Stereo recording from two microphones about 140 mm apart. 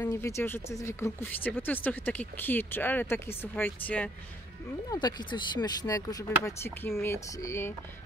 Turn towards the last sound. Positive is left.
turn(degrees=20)  # may be behind; listen again after turning